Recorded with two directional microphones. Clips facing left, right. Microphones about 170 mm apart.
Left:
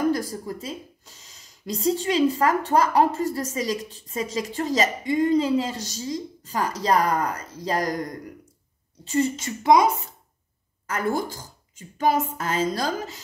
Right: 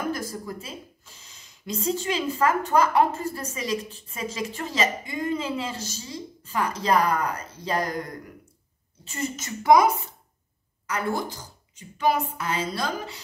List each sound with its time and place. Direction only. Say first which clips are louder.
0.1 s speech: left 4 dB; 35° left (ahead or behind)
9.1 s speech: left 8 dB; 30° left (ahead or behind)
10.9 s a woman's voice: left 2 dB; 50° left (ahead or behind)